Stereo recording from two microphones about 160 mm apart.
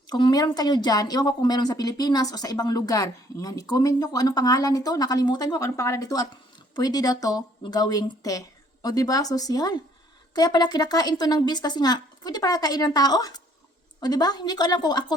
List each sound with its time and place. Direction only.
0.1 s a woman's voice: 25° left (ahead or behind)